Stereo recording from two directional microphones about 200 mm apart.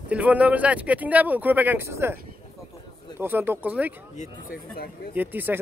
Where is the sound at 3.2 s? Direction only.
10° right (ahead or behind).